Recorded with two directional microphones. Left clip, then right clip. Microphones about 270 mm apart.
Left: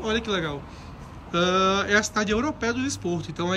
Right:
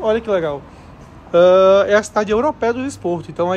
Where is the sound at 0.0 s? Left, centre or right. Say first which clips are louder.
Right 9 dB; centre.